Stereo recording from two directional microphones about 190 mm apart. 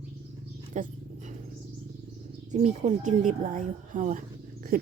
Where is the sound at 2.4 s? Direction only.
35° right (ahead or behind).